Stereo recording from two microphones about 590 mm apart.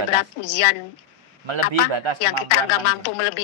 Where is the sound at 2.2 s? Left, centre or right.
Left.